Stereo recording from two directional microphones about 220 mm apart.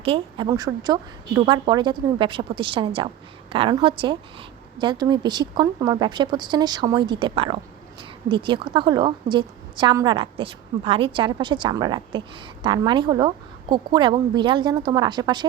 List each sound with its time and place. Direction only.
0.0 s a woman's voice: 25° right (ahead or behind)